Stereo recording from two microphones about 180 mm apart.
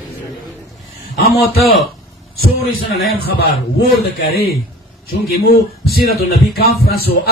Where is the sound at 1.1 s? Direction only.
55° left (ahead or behind).